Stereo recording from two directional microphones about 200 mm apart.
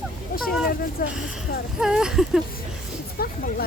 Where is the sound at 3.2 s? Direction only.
50° left (ahead or behind).